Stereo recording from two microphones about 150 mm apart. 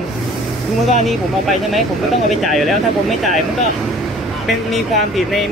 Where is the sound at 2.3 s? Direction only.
Centre (ahead or behind).